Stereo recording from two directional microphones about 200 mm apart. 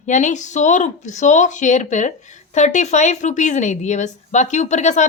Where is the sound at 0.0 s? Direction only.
35° left (ahead or behind).